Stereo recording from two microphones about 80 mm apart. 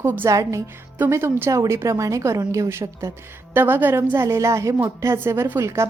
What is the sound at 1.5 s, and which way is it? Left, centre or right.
A woman's voice, right.